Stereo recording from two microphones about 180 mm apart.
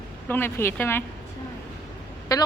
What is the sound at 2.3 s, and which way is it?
Speech, 20° left (ahead or behind).